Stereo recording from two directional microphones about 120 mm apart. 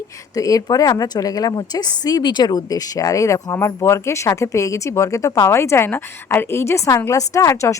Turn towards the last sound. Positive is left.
turn(degrees=25)  # may be behind; listen again after turning